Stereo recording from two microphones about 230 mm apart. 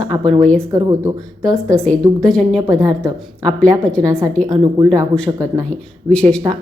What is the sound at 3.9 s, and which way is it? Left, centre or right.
Speech, centre.